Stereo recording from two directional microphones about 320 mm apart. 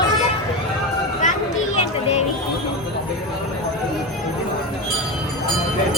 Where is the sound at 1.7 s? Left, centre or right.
Centre.